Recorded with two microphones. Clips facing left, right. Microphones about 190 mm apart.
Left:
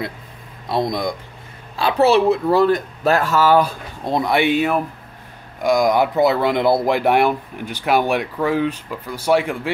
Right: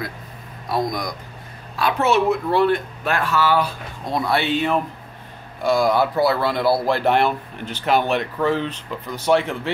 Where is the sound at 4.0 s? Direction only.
20° left (ahead or behind).